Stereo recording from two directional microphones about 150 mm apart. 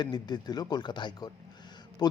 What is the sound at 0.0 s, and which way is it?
Speech, 30° left (ahead or behind).